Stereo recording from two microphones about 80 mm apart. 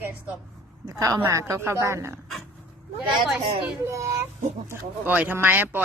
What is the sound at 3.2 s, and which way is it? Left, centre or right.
Speech, centre.